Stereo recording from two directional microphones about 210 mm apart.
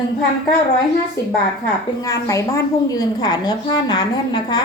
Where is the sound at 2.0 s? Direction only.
15° left (ahead or behind).